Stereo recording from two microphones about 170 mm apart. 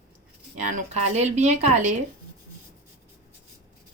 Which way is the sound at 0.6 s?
45° right (ahead or behind).